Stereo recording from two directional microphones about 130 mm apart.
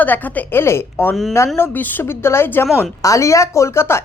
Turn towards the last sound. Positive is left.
turn(degrees=20)  # may be behind; listen again after turning